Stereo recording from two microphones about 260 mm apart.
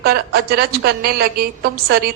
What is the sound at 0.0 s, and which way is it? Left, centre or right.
A woman's voice, right.